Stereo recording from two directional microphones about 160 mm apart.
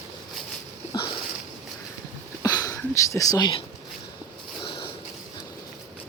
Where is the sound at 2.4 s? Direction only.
20° left (ahead or behind).